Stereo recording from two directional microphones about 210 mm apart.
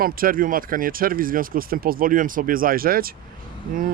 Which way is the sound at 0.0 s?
45° right (ahead or behind).